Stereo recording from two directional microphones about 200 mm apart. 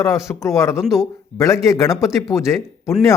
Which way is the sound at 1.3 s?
15° left (ahead or behind).